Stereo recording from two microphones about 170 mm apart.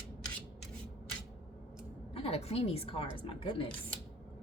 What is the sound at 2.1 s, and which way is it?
A woman's voice, 35° left (ahead or behind).